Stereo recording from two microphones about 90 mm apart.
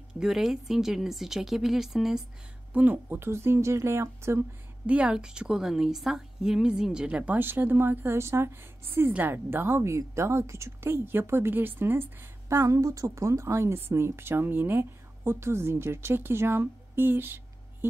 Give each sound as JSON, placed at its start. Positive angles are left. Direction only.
{"t": 0.2, "sound": "speech", "side_deg": -5}
{"t": 2.7, "sound": "a woman's voice", "side_deg": -20}
{"t": 4.8, "sound": "a woman's voice", "side_deg": -10}